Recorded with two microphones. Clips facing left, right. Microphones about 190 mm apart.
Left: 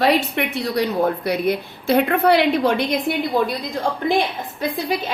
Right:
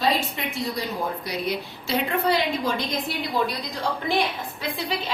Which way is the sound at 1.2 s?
60° left (ahead or behind).